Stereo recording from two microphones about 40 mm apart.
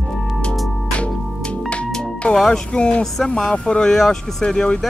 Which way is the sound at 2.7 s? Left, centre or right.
Left.